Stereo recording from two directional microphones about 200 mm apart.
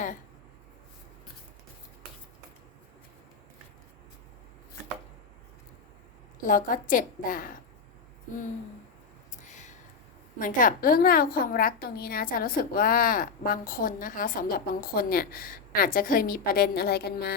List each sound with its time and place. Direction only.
6.4 s a woman's voice: 40° left (ahead or behind)
9.5 s a sound: 35° left (ahead or behind)
10.3 s a woman's voice: 40° left (ahead or behind)